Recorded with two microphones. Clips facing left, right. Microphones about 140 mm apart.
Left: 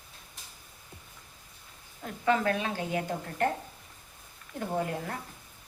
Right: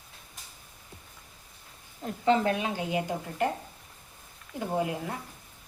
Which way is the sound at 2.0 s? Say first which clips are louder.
Right 2 dB; 20° right (ahead or behind).